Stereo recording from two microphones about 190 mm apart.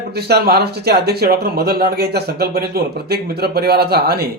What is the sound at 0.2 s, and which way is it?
Speech, 55° right (ahead or behind).